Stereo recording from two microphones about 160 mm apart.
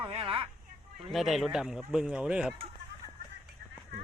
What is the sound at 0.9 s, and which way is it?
Speech, centre (ahead or behind).